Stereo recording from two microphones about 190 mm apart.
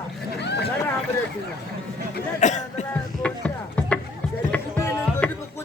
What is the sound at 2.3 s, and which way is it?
Speech, 40° left (ahead or behind).